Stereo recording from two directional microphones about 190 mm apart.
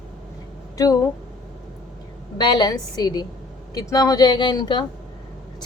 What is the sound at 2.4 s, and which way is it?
Speech, 25° left (ahead or behind).